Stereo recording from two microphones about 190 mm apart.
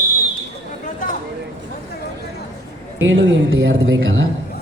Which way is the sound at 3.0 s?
80° right.